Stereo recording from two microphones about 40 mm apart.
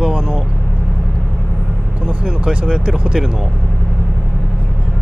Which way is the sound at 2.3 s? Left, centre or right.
Right.